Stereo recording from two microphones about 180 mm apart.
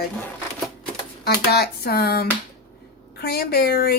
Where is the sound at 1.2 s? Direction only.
60° left (ahead or behind).